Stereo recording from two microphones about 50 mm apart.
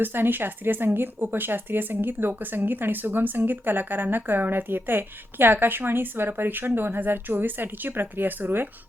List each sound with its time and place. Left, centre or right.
0.0 s speech: right